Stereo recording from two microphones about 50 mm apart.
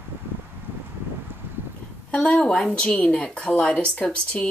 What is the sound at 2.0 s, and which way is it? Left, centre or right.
A woman's voice, left.